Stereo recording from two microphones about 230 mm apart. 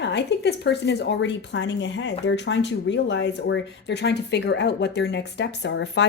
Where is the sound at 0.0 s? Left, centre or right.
Left.